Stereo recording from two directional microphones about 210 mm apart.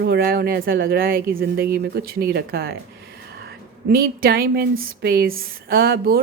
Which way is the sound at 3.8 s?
45° right (ahead or behind).